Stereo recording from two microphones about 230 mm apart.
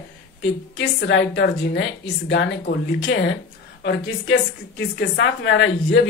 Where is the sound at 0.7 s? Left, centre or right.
Left.